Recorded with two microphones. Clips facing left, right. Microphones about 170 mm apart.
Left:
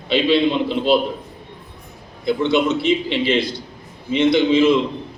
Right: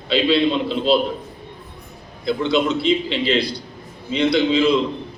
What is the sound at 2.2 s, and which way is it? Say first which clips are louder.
A man's voice: left 2 dB; 20° left (ahead or behind).